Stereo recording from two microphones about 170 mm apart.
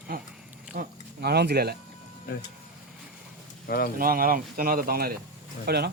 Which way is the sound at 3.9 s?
60° right (ahead or behind).